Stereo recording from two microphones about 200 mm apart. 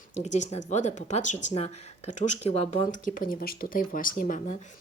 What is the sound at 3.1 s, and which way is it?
Speech, 45° left (ahead or behind).